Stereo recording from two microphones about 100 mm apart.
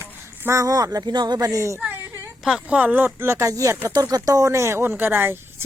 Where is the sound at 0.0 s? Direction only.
25° right (ahead or behind); by 1.5 s 45° right (ahead or behind).